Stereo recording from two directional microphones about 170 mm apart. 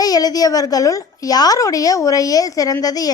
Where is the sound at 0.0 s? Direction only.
20° left (ahead or behind).